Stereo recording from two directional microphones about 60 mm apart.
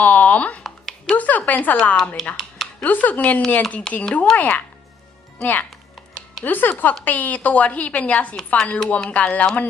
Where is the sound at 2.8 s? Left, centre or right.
Left.